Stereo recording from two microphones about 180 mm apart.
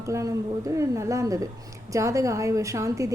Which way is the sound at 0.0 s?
15° right (ahead or behind).